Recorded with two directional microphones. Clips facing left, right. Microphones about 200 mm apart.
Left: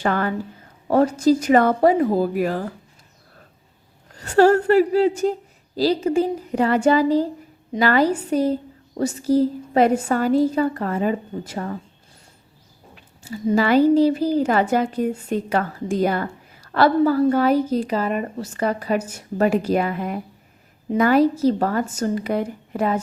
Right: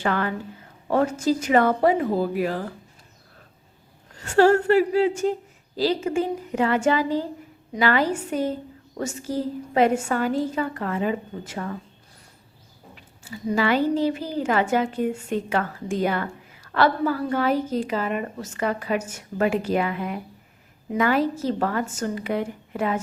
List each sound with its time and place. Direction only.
0.0 s a woman's voice: 40° left (ahead or behind)
4.2 s a woman's voice: 40° left (ahead or behind)
13.6 s a woman's voice: 40° left (ahead or behind)